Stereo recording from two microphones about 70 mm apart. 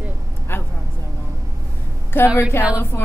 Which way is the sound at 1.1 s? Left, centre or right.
Right.